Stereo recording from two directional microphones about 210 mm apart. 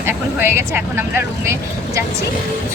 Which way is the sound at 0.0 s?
10° right (ahead or behind).